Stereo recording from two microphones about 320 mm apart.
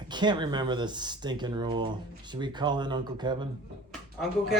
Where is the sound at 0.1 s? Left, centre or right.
Centre.